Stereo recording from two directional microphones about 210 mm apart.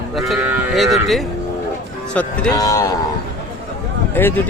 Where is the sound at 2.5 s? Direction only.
15° left (ahead or behind).